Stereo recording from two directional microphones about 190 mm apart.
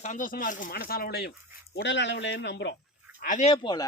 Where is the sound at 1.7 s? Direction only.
70° left (ahead or behind).